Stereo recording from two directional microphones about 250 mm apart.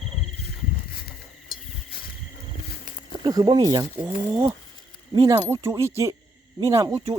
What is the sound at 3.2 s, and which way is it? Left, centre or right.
Speech, centre.